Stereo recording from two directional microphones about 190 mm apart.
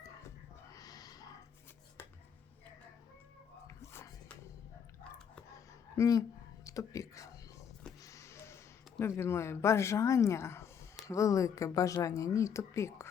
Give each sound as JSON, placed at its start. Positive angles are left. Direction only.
{"t": 0.7, "sound": "a sound", "side_deg": 20}
{"t": 3.7, "sound": "music", "side_deg": 15}
{"t": 6.0, "sound": "speech", "side_deg": 20}
{"t": 6.7, "sound": "whispering", "side_deg": 15}
{"t": 8.0, "sound": "speech", "side_deg": 15}